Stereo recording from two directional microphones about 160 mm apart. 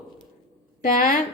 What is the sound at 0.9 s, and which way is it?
Speech, 55° left (ahead or behind).